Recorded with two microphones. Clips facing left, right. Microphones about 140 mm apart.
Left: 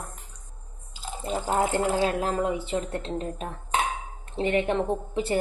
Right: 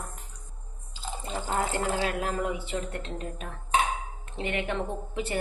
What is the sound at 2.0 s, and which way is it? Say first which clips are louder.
A woman's voice: left 4 dB; 30° left (ahead or behind).